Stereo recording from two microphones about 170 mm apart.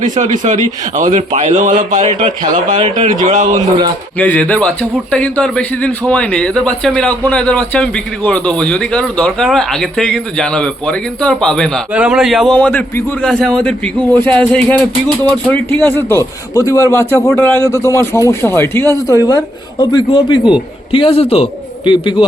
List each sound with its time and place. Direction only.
0.0 s a man's voice: 45° right (ahead or behind)
4.2 s a man's voice: 10° left (ahead or behind); by 22.3 s 30° left (ahead or behind)